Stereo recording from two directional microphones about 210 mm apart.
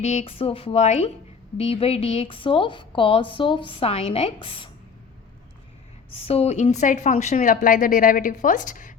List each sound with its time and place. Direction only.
0.0 s a woman's voice: 30° left (ahead or behind)
6.1 s a woman's voice: 30° left (ahead or behind)